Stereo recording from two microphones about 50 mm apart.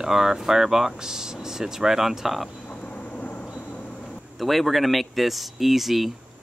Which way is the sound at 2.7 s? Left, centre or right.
Left.